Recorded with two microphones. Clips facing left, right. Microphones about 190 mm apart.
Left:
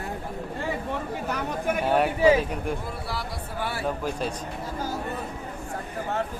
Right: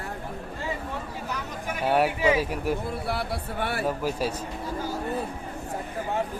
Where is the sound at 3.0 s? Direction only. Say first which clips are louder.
Right 4 dB; 60° right (ahead or behind).